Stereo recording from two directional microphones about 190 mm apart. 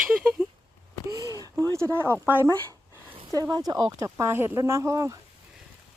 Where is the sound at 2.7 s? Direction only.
30° right (ahead or behind).